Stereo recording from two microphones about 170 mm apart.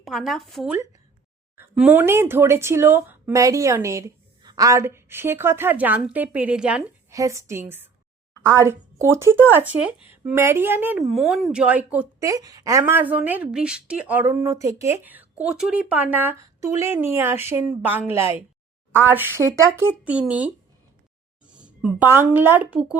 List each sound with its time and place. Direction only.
0.0 s speech: centre (ahead or behind)
7.1 s speech: 20° right (ahead or behind)
12.2 s speech: 20° right (ahead or behind)